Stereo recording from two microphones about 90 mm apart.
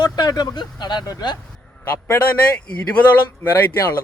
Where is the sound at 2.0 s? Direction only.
15° left (ahead or behind).